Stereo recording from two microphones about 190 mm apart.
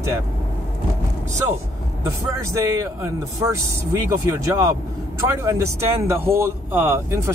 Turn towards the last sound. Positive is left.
turn(degrees=-15)  # may be behind; listen again after turning